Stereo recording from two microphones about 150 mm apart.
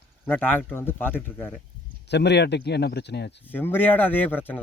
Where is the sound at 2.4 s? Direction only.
90° left.